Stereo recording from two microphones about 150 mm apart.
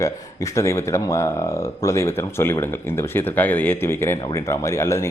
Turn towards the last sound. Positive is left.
turn(degrees=20)  # may be behind; listen again after turning